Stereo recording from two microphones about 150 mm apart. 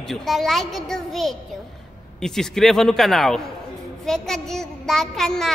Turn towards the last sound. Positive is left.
turn(degrees=5)  # may be behind; listen again after turning